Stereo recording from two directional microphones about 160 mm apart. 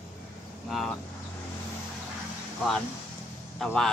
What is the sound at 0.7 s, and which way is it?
Vehicle, centre (ahead or behind).